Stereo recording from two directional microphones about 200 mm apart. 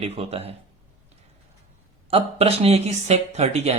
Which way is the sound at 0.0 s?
30° right (ahead or behind).